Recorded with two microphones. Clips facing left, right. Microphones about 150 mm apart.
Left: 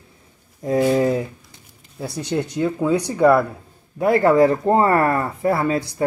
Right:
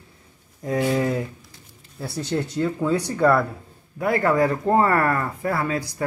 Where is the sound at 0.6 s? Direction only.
30° left (ahead or behind); by 3.4 s 15° left (ahead or behind).